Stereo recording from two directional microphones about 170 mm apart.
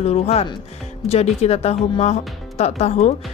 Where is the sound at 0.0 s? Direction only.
40° left (ahead or behind).